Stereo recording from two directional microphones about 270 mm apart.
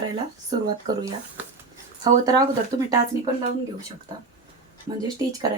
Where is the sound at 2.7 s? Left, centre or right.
Centre.